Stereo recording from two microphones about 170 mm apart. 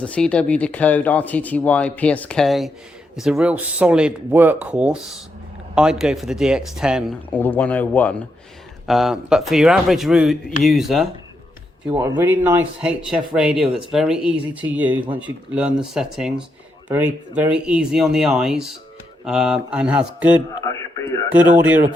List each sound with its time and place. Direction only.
0.0 s speech: 5° left (ahead or behind)
7.3 s speech: 10° left (ahead or behind)
8.9 s speech: centre (ahead or behind)
11.9 s speech: 15° right (ahead or behind)
20.6 s radio: 20° left (ahead or behind)
21.6 s speech: 10° right (ahead or behind)